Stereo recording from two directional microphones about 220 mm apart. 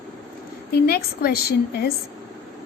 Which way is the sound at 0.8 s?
45° left (ahead or behind).